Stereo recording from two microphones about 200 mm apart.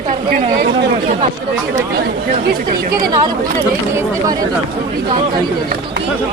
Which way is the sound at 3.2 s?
15° right (ahead or behind).